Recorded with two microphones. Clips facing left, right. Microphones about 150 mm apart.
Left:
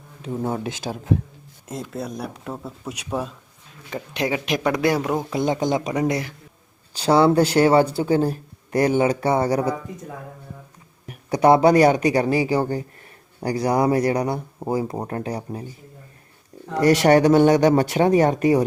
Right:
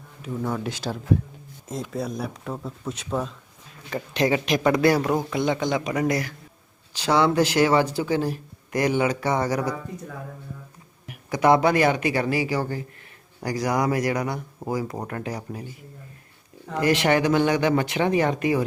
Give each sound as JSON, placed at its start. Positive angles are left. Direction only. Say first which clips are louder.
{"t": 0.2, "sound": "speech", "louder": "left 2 dB", "side_deg": 30}
{"t": 1.9, "sound": "speech", "louder": "right 2 dB", "side_deg": 0}
{"t": 5.3, "sound": "speech", "louder": "left 2 dB", "side_deg": 40}
{"t": 5.9, "sound": "speech", "louder": "left 1 dB", "side_deg": 20}
{"t": 7.0, "sound": "speech", "louder": "left 4 dB", "side_deg": 30}
{"t": 11.0, "sound": "speech", "louder": "left 3 dB", "side_deg": 35}
{"t": 16.8, "sound": "speech", "louder": "left 6 dB", "side_deg": 40}